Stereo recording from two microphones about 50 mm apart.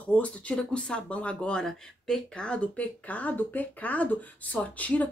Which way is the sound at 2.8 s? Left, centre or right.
Left.